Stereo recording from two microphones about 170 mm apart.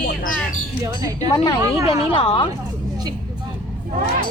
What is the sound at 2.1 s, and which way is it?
Speech, 35° left (ahead or behind).